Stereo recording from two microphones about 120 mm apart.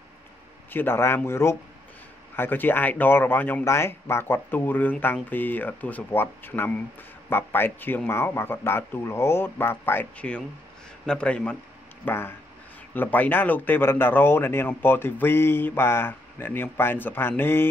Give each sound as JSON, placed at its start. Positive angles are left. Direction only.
{"t": 0.7, "sound": "speech", "side_deg": 20}